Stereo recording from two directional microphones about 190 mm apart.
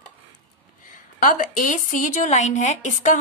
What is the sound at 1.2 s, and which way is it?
A woman's voice, 45° left (ahead or behind).